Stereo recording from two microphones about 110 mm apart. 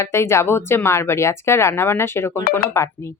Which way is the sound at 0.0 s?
25° left (ahead or behind).